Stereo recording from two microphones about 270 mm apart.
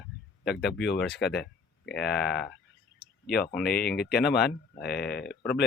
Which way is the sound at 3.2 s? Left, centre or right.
Left.